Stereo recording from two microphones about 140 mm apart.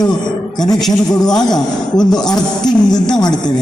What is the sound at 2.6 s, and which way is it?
Speech, 30° left (ahead or behind).